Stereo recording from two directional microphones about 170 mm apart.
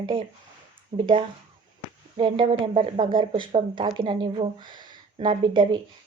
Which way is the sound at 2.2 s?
30° right (ahead or behind).